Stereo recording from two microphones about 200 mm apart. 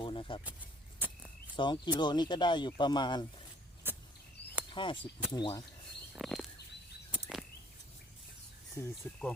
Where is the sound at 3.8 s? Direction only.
10° right (ahead or behind).